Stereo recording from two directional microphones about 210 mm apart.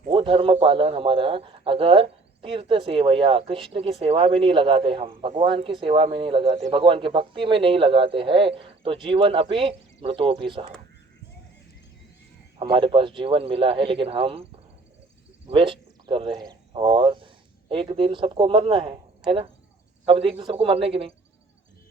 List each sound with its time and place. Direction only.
0.1 s speech: 25° right (ahead or behind)
12.5 s speech: 25° right (ahead or behind)
15.4 s speech: 25° right (ahead or behind)
20.1 s speech: 25° right (ahead or behind)